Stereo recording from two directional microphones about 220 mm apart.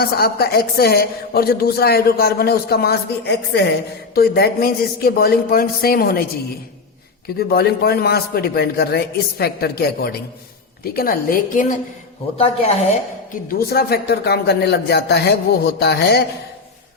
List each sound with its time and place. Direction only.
0.0 s a woman's voice: 45° left (ahead or behind)
7.3 s a woman's voice: 45° left (ahead or behind); by 13.0 s 30° left (ahead or behind)
13.5 s a woman's voice: 45° left (ahead or behind)